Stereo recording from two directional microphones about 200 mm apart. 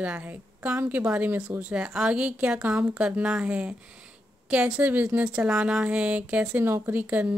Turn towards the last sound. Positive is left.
turn(degrees=-10)  # may be behind; listen again after turning